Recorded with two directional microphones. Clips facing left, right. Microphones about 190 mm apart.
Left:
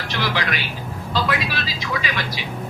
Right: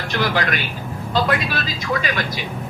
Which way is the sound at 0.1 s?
50° right (ahead or behind).